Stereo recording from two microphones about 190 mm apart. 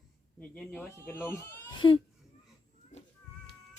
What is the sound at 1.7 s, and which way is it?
Speech, 25° left (ahead or behind).